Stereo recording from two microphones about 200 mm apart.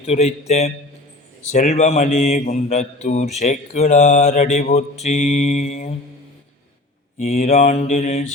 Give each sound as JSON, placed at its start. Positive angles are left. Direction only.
{"t": 0.0, "sound": "speech", "side_deg": 30}
{"t": 7.2, "sound": "speech", "side_deg": 40}